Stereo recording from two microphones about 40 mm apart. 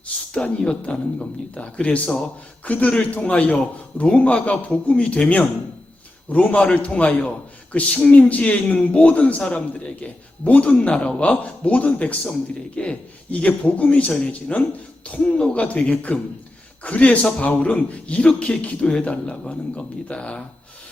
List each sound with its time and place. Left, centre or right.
0.6 s a man's voice: left
13.5 s a man's voice: left